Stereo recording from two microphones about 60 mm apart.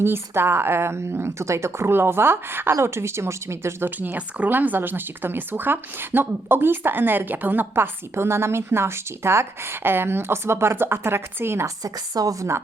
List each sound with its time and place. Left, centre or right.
0.0 s a woman's voice: right
1.9 s a woman's voice: right
3.8 s speech: right
11.6 s speech: right